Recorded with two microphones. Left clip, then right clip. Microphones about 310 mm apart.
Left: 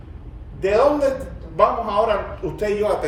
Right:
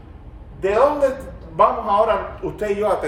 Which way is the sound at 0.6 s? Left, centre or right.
Centre.